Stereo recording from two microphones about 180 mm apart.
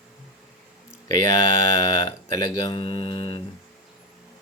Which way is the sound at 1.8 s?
25° left (ahead or behind).